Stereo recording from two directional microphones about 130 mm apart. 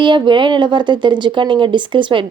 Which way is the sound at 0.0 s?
40° right (ahead or behind).